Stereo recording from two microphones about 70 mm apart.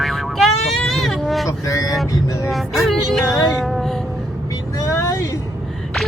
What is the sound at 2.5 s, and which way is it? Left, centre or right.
Music, centre.